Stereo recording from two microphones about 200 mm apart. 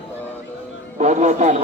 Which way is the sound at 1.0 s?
35° right (ahead or behind).